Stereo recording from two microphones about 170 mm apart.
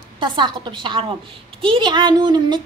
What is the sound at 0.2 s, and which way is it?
A woman's voice, 25° right (ahead or behind).